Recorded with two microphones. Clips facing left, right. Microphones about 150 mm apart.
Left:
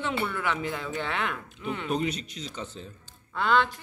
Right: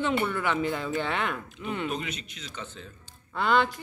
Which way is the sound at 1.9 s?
35° left (ahead or behind).